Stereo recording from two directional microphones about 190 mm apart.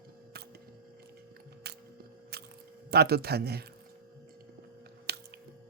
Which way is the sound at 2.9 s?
55° right (ahead or behind).